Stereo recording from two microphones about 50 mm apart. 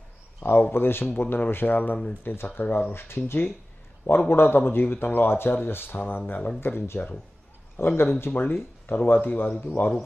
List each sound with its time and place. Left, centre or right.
0.4 s a man's voice: left
2.9 s a man's voice: left
6.6 s a man's voice: left